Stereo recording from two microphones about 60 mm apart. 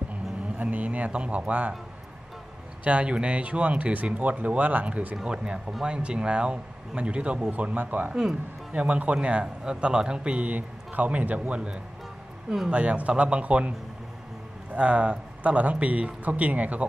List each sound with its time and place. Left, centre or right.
0.6 s speech: right
2.8 s speech: centre
8.1 s speech: centre
8.7 s speech: centre